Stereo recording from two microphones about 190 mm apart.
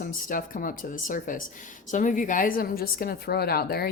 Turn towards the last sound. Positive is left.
turn(degrees=55)  # may be behind; listen again after turning